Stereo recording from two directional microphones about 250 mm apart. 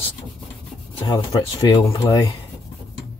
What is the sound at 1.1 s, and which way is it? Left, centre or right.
Speech, centre.